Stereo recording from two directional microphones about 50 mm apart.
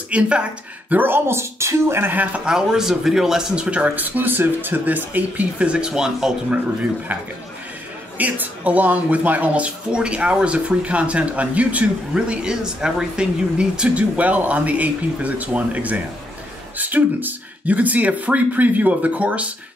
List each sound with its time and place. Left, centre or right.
0.1 s speech: right
0.9 s speech: right
1.2 s speech: right
2.4 s speech: centre
6.5 s speech: right
8.2 s speech: right
14.1 s speech: right